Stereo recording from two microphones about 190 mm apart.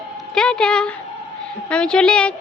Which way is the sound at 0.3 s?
5° left (ahead or behind).